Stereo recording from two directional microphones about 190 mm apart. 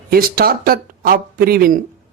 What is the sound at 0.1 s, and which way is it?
A man's voice, 50° right (ahead or behind).